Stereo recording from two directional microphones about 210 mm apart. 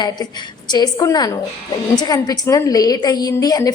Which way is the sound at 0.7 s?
20° left (ahead or behind).